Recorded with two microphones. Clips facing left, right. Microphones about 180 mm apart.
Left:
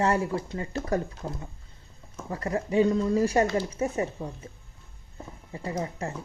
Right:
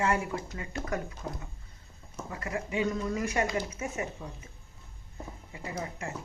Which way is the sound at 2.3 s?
35° left (ahead or behind).